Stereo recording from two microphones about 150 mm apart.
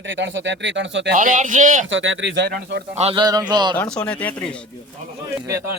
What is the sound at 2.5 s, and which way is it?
Speech, 90° right.